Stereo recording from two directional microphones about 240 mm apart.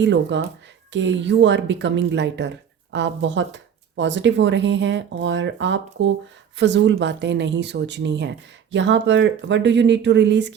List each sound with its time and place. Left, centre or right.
0.0 s speech: right